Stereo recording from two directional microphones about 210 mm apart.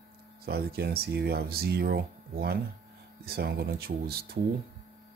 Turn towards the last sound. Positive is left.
turn(degrees=-50)  # may be behind; listen again after turning